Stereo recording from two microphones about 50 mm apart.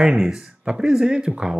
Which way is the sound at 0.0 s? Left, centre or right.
Centre.